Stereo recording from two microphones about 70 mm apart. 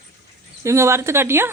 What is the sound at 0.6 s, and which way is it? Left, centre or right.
Speech, right.